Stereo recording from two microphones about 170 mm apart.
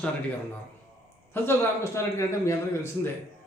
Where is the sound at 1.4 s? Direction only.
15° left (ahead or behind).